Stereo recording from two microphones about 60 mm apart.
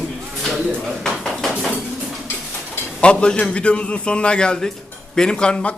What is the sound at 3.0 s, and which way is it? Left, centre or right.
Speech, centre.